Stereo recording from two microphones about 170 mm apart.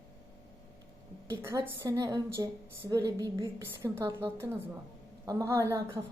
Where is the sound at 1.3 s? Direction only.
15° right (ahead or behind).